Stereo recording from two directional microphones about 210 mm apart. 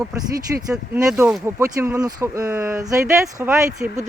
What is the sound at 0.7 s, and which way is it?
Speech, 15° right (ahead or behind).